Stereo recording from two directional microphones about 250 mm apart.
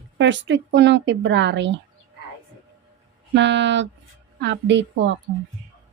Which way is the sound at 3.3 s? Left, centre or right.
Right.